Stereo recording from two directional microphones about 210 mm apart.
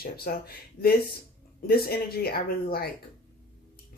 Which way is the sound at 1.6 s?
45° left (ahead or behind).